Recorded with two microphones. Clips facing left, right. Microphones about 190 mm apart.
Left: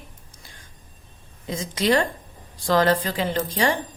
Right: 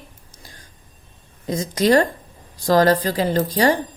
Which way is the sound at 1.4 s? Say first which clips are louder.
Right 5 dB; 40° right (ahead or behind).